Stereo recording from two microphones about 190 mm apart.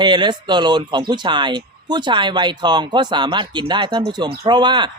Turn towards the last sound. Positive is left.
turn(degrees=-25)  # may be behind; listen again after turning